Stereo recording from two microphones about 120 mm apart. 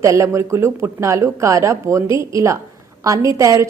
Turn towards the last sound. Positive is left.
turn(degrees=-25)  # may be behind; listen again after turning